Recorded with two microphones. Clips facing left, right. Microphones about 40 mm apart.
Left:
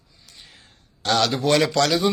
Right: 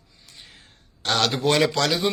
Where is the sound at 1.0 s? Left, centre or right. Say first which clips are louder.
Left 2 dB; right.